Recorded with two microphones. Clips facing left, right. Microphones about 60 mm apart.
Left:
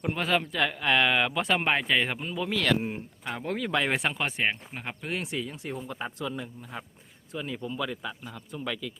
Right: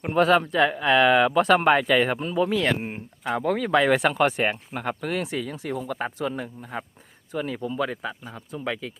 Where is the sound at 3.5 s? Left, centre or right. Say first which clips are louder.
Right 6 dB; right.